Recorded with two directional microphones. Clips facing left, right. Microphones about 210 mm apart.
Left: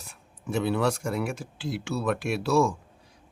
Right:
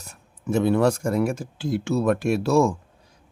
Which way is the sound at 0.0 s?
45° right (ahead or behind).